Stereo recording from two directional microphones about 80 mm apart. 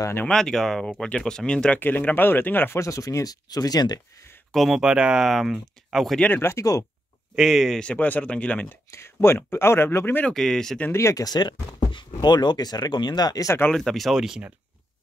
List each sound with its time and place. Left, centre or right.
0.3 s speech: centre
1.8 s speech: left
2.8 s speech: left
4.5 s speech: centre
6.1 s speech: left
6.4 s speech: left
7.3 s speech: centre
7.8 s speech: centre
8.6 s speech: left
10.2 s speech: centre
10.9 s speech: left
11.2 s speech: left
13.7 s speech: centre